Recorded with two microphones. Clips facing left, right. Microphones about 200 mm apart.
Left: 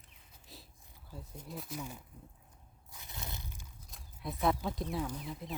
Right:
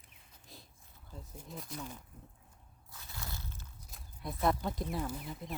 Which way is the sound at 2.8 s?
15° left (ahead or behind).